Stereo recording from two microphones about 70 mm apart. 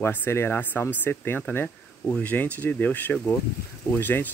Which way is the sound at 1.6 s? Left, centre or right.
Centre.